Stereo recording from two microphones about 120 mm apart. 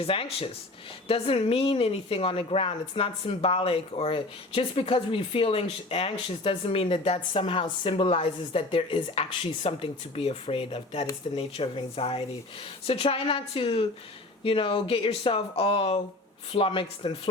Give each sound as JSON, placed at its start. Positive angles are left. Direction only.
{"t": 0.0, "sound": "a woman's voice", "side_deg": 50}